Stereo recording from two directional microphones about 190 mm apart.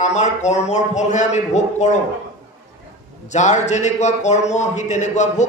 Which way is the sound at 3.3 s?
40° left (ahead or behind).